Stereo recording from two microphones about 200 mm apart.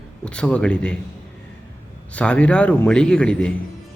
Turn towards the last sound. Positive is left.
turn(degrees=5)  # may be behind; listen again after turning